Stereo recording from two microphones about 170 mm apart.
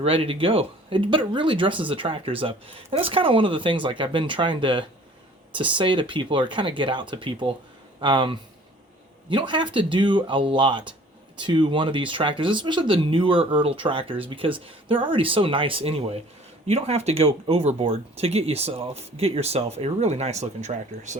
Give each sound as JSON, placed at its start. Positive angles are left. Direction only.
{"t": 0.0, "sound": "speech", "side_deg": -35}